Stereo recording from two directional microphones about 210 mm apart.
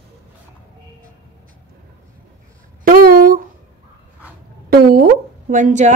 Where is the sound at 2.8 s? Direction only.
40° right (ahead or behind).